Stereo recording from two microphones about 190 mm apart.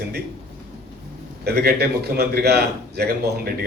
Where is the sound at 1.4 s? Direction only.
55° right (ahead or behind).